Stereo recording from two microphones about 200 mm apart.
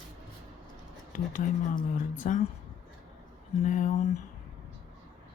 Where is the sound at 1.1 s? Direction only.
40° left (ahead or behind).